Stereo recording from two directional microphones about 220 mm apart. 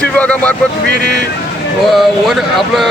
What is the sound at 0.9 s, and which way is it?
Speech, 50° right (ahead or behind).